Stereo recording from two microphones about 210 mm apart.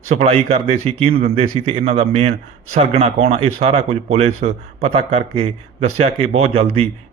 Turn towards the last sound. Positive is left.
turn(degrees=-25)  # may be behind; listen again after turning